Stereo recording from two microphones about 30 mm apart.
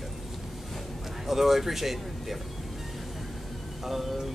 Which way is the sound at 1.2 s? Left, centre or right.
Centre.